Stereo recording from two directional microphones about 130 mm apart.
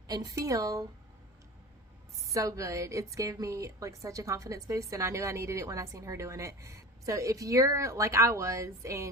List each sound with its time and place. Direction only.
0.1 s speech: 30° right (ahead or behind)
2.3 s speech: 25° right (ahead or behind)